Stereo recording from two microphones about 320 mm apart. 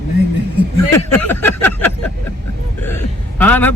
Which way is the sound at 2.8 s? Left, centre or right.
Centre.